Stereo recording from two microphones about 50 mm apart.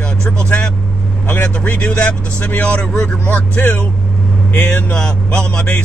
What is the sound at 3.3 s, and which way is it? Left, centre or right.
Speech, left.